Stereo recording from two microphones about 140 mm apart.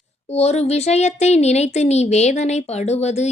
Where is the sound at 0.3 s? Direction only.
50° left (ahead or behind).